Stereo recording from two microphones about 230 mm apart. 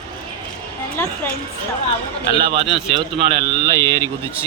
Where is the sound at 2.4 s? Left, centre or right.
Right.